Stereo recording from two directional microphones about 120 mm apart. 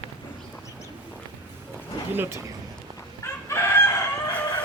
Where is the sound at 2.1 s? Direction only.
20° right (ahead or behind).